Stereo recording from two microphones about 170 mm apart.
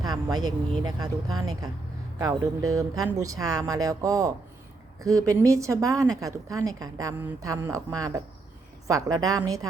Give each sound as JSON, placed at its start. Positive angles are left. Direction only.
{"t": 0.0, "sound": "a woman's voice", "side_deg": -25}